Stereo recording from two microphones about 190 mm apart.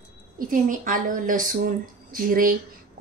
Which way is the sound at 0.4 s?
45° right (ahead or behind).